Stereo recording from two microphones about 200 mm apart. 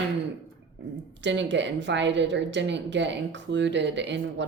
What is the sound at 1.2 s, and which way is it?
A woman's voice, 65° right (ahead or behind).